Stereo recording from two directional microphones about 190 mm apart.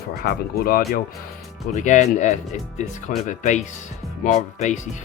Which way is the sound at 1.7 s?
40° left (ahead or behind).